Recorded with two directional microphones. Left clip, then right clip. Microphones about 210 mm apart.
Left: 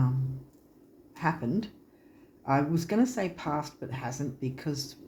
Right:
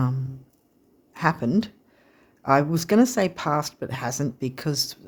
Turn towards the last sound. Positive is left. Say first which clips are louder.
# right 8 dB
turn(degrees=-55)  # may be behind; listen again after turning